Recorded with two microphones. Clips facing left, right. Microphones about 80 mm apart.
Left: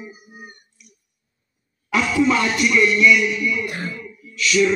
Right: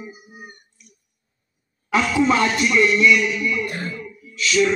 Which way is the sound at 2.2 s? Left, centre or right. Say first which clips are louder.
Even; right.